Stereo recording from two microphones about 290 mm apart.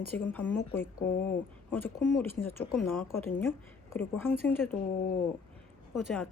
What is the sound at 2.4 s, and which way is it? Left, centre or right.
Speech, centre.